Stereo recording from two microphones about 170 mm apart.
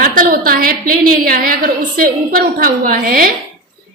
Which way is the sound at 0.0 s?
55° right (ahead or behind).